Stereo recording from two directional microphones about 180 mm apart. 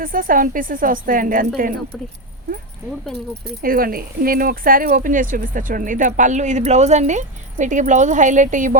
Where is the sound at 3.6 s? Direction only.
50° right (ahead or behind).